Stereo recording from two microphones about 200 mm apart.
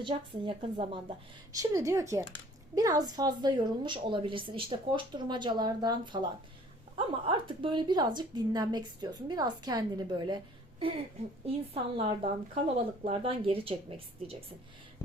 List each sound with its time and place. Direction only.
0.0 s a woman's voice: 25° right (ahead or behind)
1.5 s a woman's voice: 15° right (ahead or behind)
12.0 s a woman's voice: 30° right (ahead or behind)